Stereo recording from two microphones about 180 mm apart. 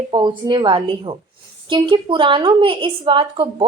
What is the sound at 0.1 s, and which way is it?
A woman's voice, 25° right (ahead or behind).